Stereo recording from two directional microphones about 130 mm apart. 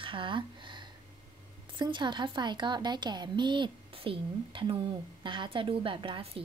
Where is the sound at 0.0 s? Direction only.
40° right (ahead or behind).